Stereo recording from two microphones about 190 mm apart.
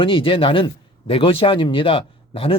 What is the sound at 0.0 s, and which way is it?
Speech, 25° left (ahead or behind).